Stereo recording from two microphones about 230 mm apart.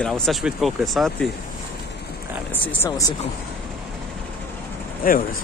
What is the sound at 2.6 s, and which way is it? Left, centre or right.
Speech, centre.